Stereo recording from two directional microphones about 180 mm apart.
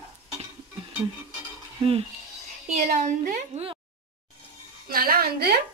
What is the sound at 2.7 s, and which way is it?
Speech, 45° right (ahead or behind).